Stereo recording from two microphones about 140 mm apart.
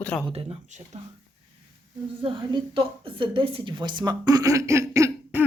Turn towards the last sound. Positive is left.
turn(degrees=-20)  # may be behind; listen again after turning